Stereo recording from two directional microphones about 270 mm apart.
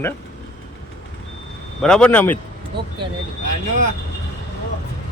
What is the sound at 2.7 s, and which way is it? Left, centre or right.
Speech, right.